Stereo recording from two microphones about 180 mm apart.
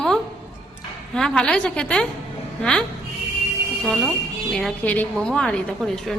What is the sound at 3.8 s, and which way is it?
A woman's voice, centre (ahead or behind).